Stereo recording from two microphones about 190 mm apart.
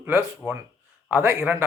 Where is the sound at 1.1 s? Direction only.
15° right (ahead or behind).